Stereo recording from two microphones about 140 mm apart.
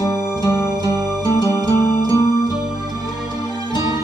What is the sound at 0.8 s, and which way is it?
Music, 25° right (ahead or behind).